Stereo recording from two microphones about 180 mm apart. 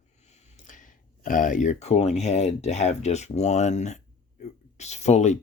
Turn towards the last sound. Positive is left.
turn(degrees=40)  # may be behind; listen again after turning